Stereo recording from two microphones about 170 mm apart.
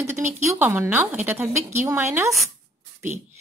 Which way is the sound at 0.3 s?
10° right (ahead or behind).